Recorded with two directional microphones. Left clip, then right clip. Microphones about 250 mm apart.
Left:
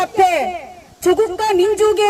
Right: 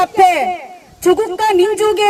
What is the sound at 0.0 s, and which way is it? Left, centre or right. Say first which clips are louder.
A man's voice: right 3 dB; right.